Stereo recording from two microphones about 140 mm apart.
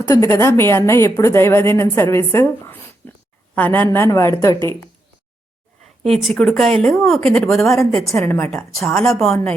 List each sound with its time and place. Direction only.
0.1 s a woman's voice: 20° left (ahead or behind)
3.0 s a sound: 15° left (ahead or behind)
3.5 s a woman's voice: 10° left (ahead or behind)
6.1 s speech: centre (ahead or behind)
8.1 s a woman's voice: 15° left (ahead or behind)
8.9 s speech: 5° left (ahead or behind)